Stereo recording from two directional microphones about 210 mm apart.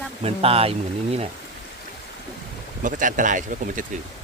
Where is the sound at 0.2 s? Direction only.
30° right (ahead or behind).